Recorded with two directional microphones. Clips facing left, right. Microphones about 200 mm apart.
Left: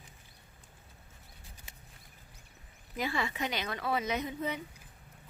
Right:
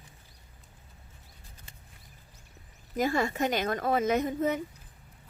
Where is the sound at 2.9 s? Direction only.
45° right (ahead or behind).